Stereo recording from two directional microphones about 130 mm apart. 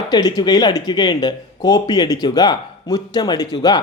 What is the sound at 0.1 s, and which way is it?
Speech, 30° left (ahead or behind).